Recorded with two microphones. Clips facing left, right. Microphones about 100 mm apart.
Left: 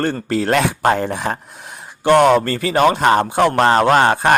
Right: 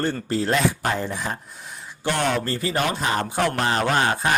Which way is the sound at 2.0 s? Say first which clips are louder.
Left 11 dB; 75° left (ahead or behind).